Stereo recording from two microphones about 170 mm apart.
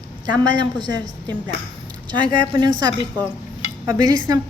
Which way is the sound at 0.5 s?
25° right (ahead or behind).